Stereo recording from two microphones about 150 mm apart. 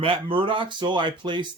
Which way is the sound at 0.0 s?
35° right (ahead or behind).